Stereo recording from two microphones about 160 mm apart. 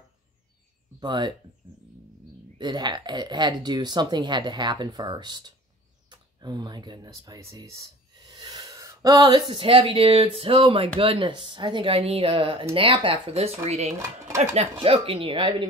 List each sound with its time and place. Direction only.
0.9 s speech: 30° right (ahead or behind)
2.6 s speech: 25° right (ahead or behind)
13.9 s speech: 20° right (ahead or behind)
14.4 s speech: 40° right (ahead or behind)